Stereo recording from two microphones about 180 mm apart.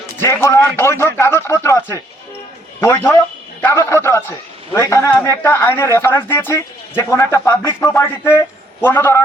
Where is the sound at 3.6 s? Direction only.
10° left (ahead or behind).